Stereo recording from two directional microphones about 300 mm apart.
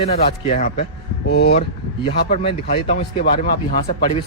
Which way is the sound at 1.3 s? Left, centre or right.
Left.